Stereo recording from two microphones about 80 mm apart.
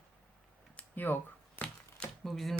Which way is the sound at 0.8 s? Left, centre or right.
Left.